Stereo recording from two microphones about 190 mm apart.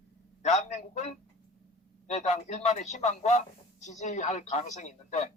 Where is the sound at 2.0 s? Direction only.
35° left (ahead or behind).